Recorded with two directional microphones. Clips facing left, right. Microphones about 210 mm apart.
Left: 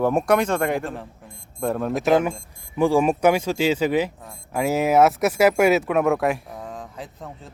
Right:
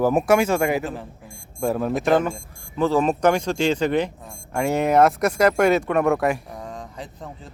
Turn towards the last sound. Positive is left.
turn(degrees=0)  # may be behind; listen again after turning